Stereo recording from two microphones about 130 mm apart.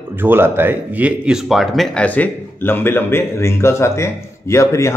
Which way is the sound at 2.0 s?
10° left (ahead or behind).